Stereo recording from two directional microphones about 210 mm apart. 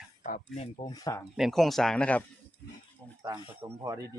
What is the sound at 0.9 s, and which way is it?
Speech, 15° left (ahead or behind).